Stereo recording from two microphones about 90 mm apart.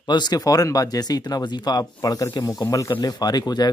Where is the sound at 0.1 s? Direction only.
50° left (ahead or behind).